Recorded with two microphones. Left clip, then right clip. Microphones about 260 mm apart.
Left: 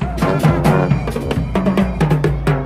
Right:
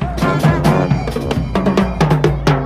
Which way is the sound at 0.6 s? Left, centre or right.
Centre.